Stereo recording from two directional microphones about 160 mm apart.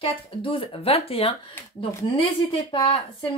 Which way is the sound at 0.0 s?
35° left (ahead or behind).